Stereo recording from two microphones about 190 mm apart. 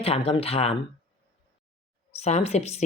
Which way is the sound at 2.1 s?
35° left (ahead or behind).